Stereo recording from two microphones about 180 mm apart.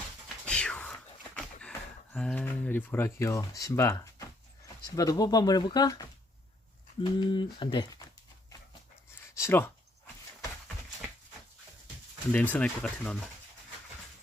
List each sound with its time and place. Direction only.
0.4 s whispering: 5° left (ahead or behind)
2.1 s speech: 5° left (ahead or behind); by 8.0 s 25° left (ahead or behind)
9.3 s a sound: 15° left (ahead or behind)
12.3 s speech: 10° left (ahead or behind)